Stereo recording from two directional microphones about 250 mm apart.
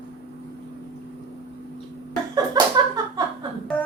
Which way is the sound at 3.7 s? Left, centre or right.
Centre.